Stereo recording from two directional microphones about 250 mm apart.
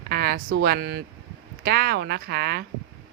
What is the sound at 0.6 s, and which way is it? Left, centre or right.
Speech, right.